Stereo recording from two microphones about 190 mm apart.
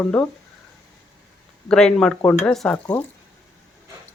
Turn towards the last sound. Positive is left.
turn(degrees=5)  # may be behind; listen again after turning